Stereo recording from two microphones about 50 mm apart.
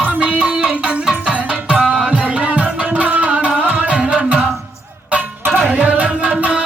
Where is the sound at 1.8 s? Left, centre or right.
Centre.